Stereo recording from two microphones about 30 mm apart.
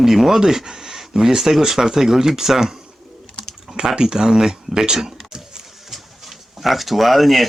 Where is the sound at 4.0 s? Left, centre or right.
Right.